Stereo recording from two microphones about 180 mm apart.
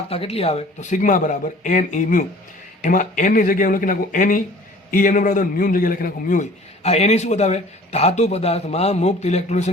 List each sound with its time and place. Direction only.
0.1 s a man's voice: 35° left (ahead or behind)